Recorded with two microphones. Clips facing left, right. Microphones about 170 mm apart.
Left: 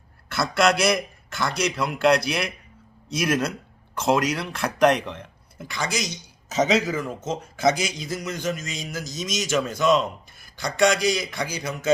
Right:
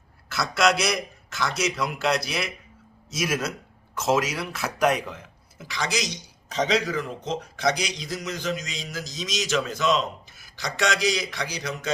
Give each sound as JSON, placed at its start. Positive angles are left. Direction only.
{"t": 0.3, "sound": "a man's voice", "side_deg": 0}
{"t": 8.5, "sound": "a man's voice", "side_deg": 50}
{"t": 10.4, "sound": "a man's voice", "side_deg": 0}